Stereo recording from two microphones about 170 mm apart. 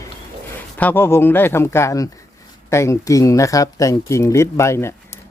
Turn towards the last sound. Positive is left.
turn(degrees=15)  # may be behind; listen again after turning